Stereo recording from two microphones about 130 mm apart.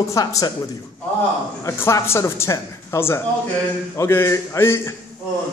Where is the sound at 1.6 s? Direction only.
20° left (ahead or behind).